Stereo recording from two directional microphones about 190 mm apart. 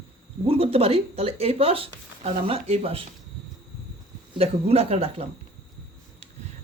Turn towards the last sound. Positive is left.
turn(degrees=-30)  # may be behind; listen again after turning